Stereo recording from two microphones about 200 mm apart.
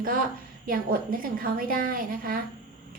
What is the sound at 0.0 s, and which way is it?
A woman's voice, 45° right (ahead or behind).